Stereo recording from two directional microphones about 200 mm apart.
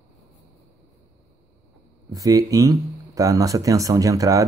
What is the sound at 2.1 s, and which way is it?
Speech, 15° right (ahead or behind).